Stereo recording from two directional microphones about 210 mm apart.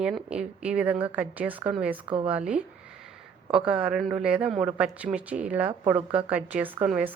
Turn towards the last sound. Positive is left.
turn(degrees=-5)  # may be behind; listen again after turning